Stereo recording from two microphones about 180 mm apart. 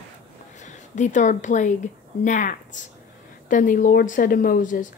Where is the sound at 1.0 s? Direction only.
45° left (ahead or behind).